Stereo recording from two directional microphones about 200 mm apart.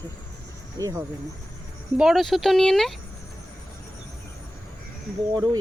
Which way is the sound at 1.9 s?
Centre (ahead or behind).